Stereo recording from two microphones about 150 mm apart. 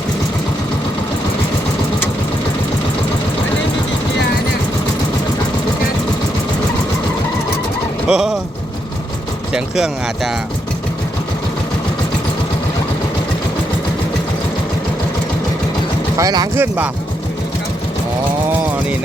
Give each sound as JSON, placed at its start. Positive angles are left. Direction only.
{"t": 8.0, "sound": "speech", "side_deg": -5}
{"t": 9.5, "sound": "speech", "side_deg": -5}
{"t": 16.1, "sound": "speech", "side_deg": -25}
{"t": 16.6, "sound": "speech", "side_deg": -10}